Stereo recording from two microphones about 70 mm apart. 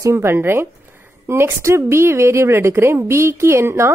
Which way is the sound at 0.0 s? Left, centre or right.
Right.